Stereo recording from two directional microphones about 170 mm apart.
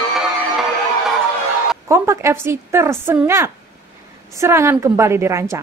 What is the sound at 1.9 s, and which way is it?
A woman's voice, 15° right (ahead or behind).